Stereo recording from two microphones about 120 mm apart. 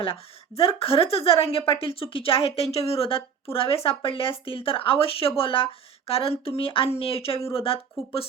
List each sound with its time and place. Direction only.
0.0 s a woman's voice: 50° left (ahead or behind)